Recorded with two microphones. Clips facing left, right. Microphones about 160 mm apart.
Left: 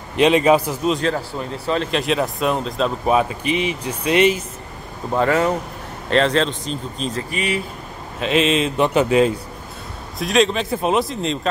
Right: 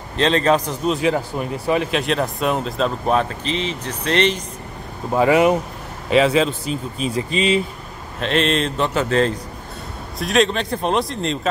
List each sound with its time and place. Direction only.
0.1 s speech: 10° left (ahead or behind)
1.0 s speech: 15° right (ahead or behind)
1.9 s speech: centre (ahead or behind)
5.1 s speech: 10° right (ahead or behind)
7.2 s speech: 20° right (ahead or behind)
8.2 s speech: 5° left (ahead or behind)